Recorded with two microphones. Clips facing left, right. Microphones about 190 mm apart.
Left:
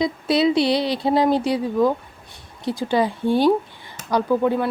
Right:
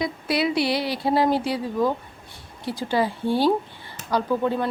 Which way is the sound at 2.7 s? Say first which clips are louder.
Left 3 dB; 15° left (ahead or behind).